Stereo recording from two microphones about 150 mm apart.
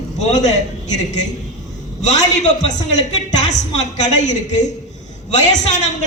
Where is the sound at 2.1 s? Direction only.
55° left (ahead or behind).